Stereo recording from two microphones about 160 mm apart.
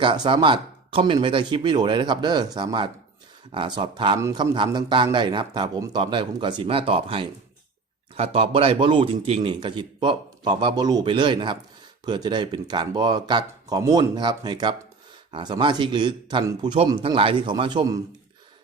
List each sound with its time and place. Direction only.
0.0 s a man's voice: 30° right (ahead or behind)
4.2 s speech: 20° right (ahead or behind)
4.5 s a man's voice: 30° right (ahead or behind)
16.7 s speech: 35° right (ahead or behind)